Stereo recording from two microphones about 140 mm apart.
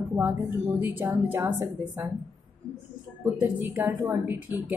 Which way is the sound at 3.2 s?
15° right (ahead or behind).